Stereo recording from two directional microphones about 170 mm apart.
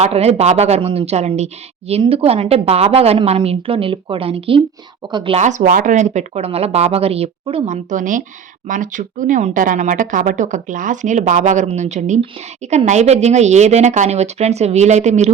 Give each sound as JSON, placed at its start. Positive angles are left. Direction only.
{"t": 0.0, "sound": "a woman's voice", "side_deg": -35}
{"t": 5.4, "sound": "a woman's voice", "side_deg": -45}